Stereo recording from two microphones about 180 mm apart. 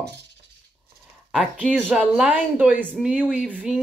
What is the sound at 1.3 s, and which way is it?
Speech, 5° right (ahead or behind).